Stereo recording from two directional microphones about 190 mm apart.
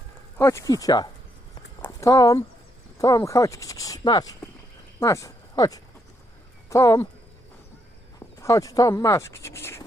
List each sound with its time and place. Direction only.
0.3 s speech: 15° left (ahead or behind)
1.8 s a sound: 15° left (ahead or behind)
3.0 s speech: 15° left (ahead or behind)
8.4 s speech: 15° left (ahead or behind)